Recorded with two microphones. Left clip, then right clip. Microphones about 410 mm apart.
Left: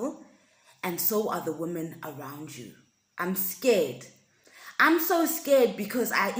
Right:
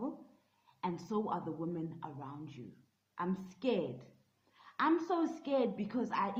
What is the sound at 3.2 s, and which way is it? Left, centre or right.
Speech, right.